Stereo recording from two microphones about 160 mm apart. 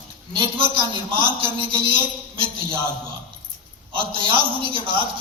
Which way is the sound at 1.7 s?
35° right (ahead or behind).